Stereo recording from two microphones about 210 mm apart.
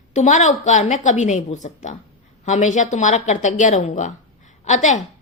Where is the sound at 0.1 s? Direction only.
35° left (ahead or behind).